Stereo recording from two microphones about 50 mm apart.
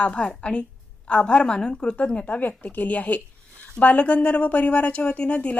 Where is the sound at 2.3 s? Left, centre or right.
Left.